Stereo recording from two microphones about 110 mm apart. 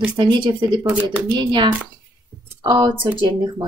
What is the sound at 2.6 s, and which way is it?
Speech, 45° right (ahead or behind).